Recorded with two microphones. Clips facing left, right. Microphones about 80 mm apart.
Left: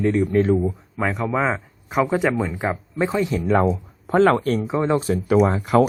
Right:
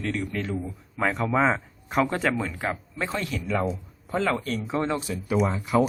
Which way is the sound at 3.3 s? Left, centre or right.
Left.